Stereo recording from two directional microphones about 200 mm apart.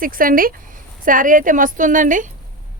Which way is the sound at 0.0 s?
45° right (ahead or behind).